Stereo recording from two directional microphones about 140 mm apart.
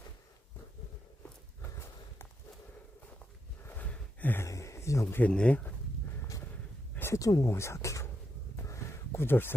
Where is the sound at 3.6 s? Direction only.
15° left (ahead or behind).